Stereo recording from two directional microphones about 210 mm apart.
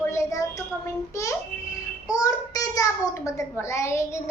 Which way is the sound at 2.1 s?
15° left (ahead or behind).